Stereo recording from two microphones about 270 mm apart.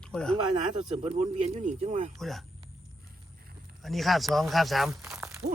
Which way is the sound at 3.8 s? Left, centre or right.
Centre.